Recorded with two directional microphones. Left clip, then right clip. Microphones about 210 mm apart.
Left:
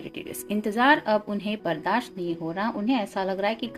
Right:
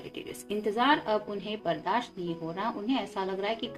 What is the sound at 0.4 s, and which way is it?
A woman's voice, 50° left (ahead or behind).